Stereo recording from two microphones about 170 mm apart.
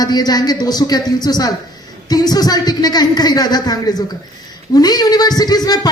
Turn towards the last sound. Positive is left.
turn(degrees=25)  # may be behind; listen again after turning